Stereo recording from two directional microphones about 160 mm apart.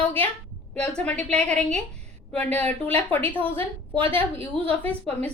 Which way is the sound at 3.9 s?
35° right (ahead or behind).